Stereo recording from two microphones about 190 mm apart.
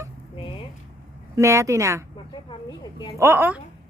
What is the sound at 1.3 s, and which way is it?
Speech, 15° right (ahead or behind).